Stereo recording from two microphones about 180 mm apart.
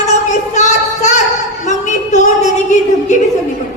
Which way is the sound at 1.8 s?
40° left (ahead or behind).